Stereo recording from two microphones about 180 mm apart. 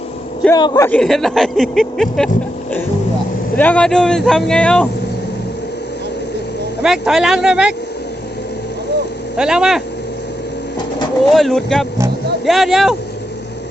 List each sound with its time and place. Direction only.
0.5 s a man's voice: 20° left (ahead or behind)
0.9 s speech: 5° left (ahead or behind)
6.8 s speech: 5° right (ahead or behind)
9.4 s speech: 5° right (ahead or behind)
11.3 s speech: centre (ahead or behind)